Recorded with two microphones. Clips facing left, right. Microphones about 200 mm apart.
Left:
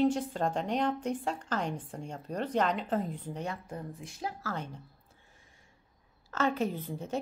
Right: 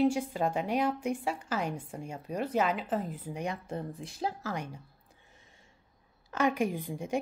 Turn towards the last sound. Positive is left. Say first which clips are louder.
# right 1 dB
turn(degrees=-15)  # may be behind; listen again after turning